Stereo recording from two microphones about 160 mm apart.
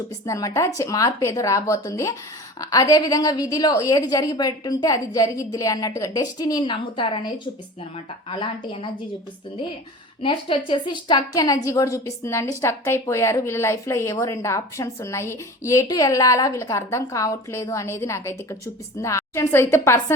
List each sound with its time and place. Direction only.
0.3 s a woman's voice: 20° left (ahead or behind)
8.3 s a woman's voice: 30° left (ahead or behind)
10.2 s a woman's voice: 30° left (ahead or behind); by 20.1 s 15° left (ahead or behind)